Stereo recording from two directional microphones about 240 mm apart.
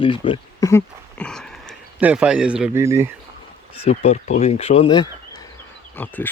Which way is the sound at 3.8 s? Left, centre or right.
Left.